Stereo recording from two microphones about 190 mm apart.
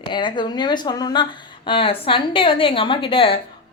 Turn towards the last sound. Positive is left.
turn(degrees=30)  # may be behind; listen again after turning